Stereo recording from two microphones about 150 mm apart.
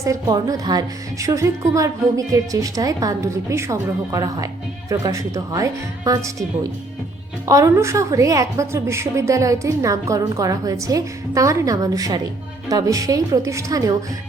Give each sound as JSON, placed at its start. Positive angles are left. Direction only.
{"t": 0.0, "sound": "a woman's voice", "side_deg": -25}